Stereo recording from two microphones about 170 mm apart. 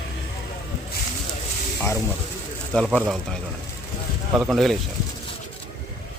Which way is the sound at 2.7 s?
5° left (ahead or behind).